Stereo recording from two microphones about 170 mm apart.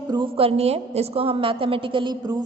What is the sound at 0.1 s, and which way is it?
A woman's voice, 30° right (ahead or behind).